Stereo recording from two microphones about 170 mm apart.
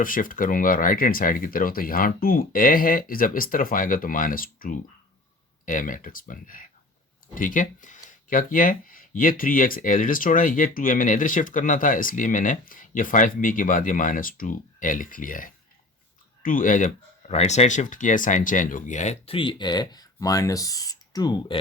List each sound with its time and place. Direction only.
0.0 s speech: 55° left (ahead or behind); by 21.6 s 25° left (ahead or behind)